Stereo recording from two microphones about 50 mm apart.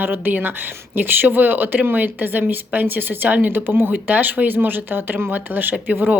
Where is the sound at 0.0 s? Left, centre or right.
Right.